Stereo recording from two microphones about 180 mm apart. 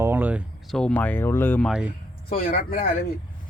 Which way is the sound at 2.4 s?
50° left (ahead or behind).